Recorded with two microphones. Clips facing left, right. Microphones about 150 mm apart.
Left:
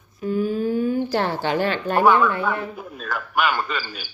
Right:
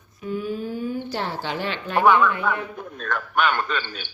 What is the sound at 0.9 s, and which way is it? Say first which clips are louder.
A woman's voice: left 6 dB; 65° left (ahead or behind).